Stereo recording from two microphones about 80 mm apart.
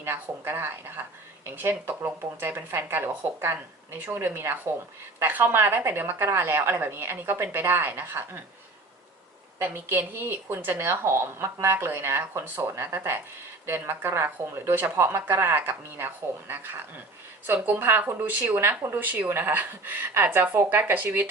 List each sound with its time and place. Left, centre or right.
0.0 s a woman's voice: right
9.6 s a woman's voice: right